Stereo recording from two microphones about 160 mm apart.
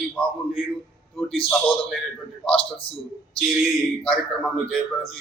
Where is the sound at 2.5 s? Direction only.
35° left (ahead or behind).